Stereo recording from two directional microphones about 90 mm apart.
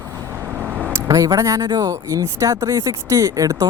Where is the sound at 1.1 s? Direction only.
45° right (ahead or behind).